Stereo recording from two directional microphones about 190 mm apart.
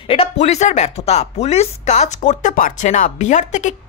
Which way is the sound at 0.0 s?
30° left (ahead or behind).